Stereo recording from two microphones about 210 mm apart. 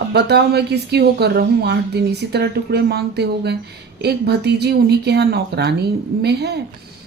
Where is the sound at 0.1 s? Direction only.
50° right (ahead or behind).